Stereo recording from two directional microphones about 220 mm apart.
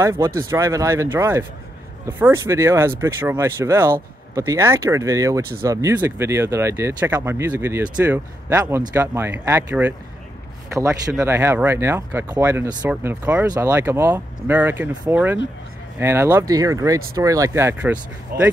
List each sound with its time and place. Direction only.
0.0 s speech: 10° right (ahead or behind)
18.3 s speech: 45° right (ahead or behind)